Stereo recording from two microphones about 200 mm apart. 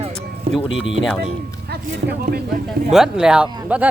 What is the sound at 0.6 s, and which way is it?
Speech, 70° left (ahead or behind).